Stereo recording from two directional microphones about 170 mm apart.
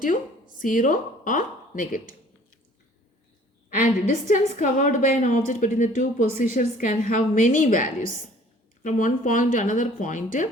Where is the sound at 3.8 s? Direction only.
50° left (ahead or behind).